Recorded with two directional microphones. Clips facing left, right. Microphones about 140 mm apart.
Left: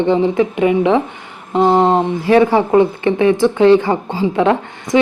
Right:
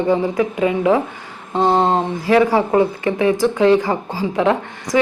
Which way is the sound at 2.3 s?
25° left (ahead or behind).